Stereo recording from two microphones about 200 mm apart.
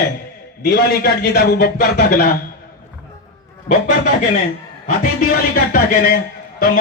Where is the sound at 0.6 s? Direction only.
50° left (ahead or behind).